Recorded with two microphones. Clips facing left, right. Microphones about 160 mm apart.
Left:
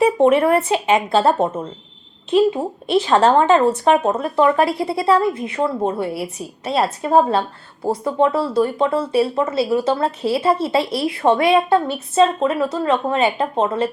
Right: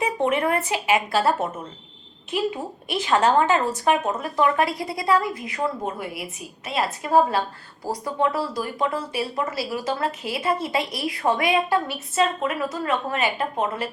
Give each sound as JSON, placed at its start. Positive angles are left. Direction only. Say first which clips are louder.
{"t": 0.3, "sound": "a woman's voice", "louder": "left 8 dB", "side_deg": 30}